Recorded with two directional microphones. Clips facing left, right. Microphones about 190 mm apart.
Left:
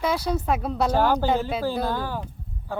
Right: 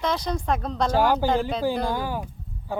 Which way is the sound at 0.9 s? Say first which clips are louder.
Right 2 dB; 10° right (ahead or behind).